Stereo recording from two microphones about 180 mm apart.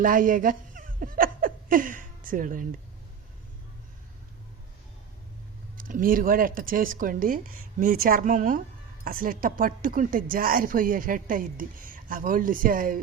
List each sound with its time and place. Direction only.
0.0 s laughter: 50° right (ahead or behind)
5.7 s a woman's voice: 50° right (ahead or behind)